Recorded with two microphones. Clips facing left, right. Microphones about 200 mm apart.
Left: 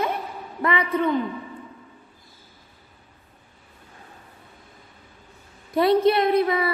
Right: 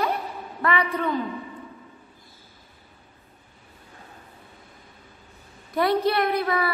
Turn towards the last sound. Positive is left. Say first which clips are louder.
# left 4 dB
turn(degrees=25)  # may be behind; listen again after turning